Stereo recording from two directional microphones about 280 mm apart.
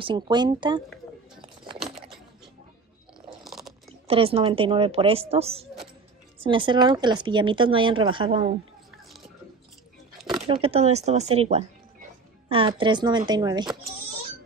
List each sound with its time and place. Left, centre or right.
0.0 s a woman's voice: centre
1.4 s a sound: centre
3.4 s chewing: centre
4.1 s a woman's voice: centre
10.1 s a sound: centre
10.5 s a woman's voice: right